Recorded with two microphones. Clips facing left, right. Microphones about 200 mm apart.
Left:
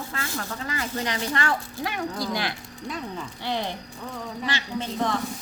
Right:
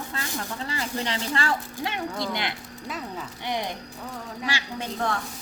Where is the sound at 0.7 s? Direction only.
30° right (ahead or behind); by 5.1 s 10° right (ahead or behind).